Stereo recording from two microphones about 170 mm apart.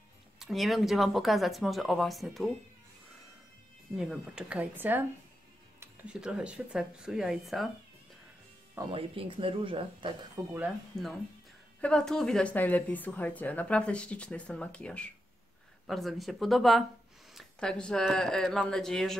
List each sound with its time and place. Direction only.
0.4 s speech: centre (ahead or behind)
3.9 s speech: 5° right (ahead or behind)
8.9 s speech: 30° right (ahead or behind)
10.4 s speech: 20° right (ahead or behind)
10.9 s speech: centre (ahead or behind)